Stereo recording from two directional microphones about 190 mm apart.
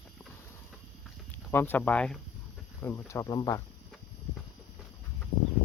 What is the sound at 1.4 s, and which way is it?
Speech, 10° left (ahead or behind).